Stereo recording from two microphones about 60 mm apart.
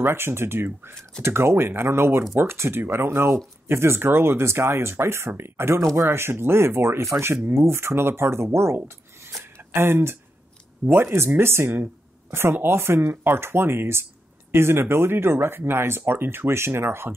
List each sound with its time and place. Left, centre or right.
0.0 s speech: right
8.7 s mechanisms: right
9.4 s a sound: right
10.9 s speech: right